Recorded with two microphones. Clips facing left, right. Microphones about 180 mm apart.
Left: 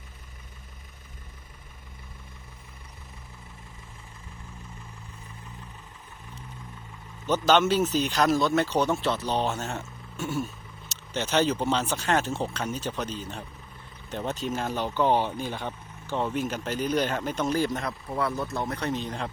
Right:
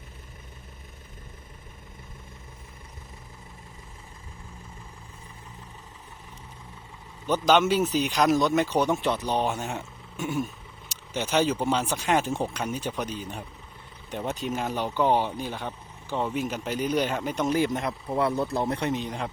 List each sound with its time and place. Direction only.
7.3 s speech: 10° right (ahead or behind)
16.6 s speech: 15° right (ahead or behind)